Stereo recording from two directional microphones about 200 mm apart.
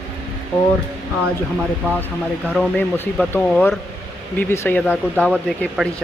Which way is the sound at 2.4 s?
Centre (ahead or behind).